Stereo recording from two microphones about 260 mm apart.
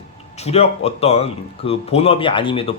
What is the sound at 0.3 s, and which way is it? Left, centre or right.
A man's voice, left.